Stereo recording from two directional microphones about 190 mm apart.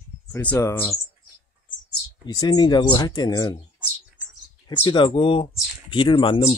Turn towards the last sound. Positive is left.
turn(degrees=25)  # may be behind; listen again after turning